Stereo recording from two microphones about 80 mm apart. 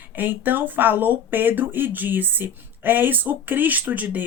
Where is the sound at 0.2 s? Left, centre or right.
Right.